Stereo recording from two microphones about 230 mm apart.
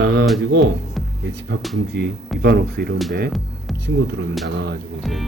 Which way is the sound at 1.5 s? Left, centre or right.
Right.